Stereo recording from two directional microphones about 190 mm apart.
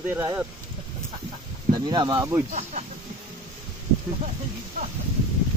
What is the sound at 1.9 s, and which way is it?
Speech, 20° right (ahead or behind).